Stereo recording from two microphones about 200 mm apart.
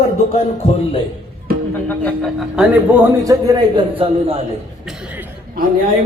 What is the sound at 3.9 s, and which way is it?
Speech, 30° right (ahead or behind).